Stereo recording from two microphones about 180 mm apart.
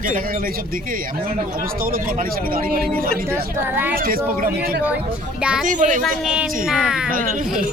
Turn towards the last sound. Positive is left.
turn(degrees=-5)  # may be behind; listen again after turning